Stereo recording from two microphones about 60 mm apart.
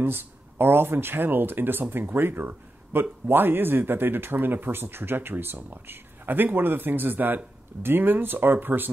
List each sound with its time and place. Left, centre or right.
0.0 s speech: right